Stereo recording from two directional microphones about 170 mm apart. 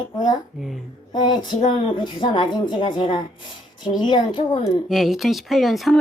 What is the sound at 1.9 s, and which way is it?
A woman's voice, 30° left (ahead or behind).